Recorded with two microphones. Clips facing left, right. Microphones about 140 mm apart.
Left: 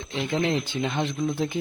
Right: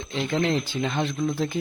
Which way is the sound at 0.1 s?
15° left (ahead or behind).